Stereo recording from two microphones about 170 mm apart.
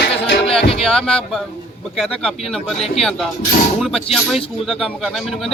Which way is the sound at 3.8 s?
Centre (ahead or behind).